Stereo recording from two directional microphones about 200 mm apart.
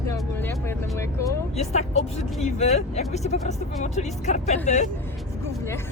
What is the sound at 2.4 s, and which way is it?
Speech, 35° left (ahead or behind).